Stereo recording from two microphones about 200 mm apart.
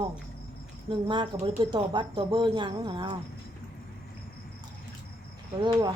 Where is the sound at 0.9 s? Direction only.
25° right (ahead or behind).